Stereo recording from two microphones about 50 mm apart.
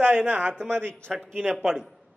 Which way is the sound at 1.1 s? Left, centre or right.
Centre.